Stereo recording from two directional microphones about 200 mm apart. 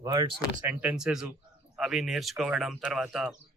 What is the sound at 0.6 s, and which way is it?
Speech, 5° right (ahead or behind).